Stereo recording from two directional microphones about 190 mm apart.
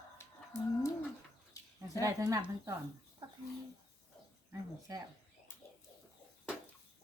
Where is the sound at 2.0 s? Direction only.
20° right (ahead or behind).